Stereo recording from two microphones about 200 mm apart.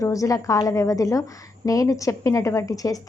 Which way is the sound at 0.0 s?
15° left (ahead or behind).